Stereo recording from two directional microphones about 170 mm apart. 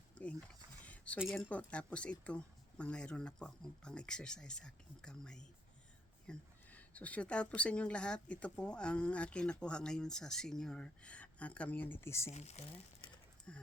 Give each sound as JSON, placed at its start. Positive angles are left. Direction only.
{"t": 0.2, "sound": "mechanisms", "side_deg": 5}
{"t": 0.9, "sound": "a sound", "side_deg": 10}
{"t": 1.2, "sound": "speech", "side_deg": 5}
{"t": 12.3, "sound": "speech", "side_deg": 40}
{"t": 13.5, "sound": "speech", "side_deg": 5}